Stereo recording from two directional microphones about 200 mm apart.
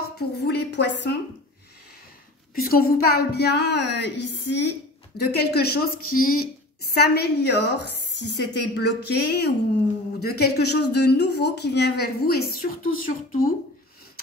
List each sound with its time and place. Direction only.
0.2 s speech: 55° left (ahead or behind)
2.5 s a woman's voice: 50° left (ahead or behind)